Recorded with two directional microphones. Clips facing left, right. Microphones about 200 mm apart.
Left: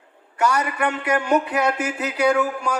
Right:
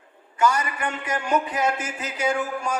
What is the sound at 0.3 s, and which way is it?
Speech, 65° left (ahead or behind).